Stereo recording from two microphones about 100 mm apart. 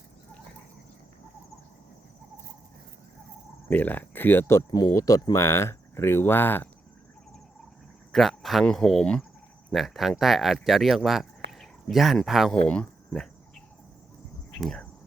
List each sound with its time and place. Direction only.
3.7 s speech: 15° left (ahead or behind)
4.9 s speech: 35° left (ahead or behind)
8.1 s speech: centre (ahead or behind)
12.6 s speech: 10° left (ahead or behind)
14.6 s speech: 5° left (ahead or behind)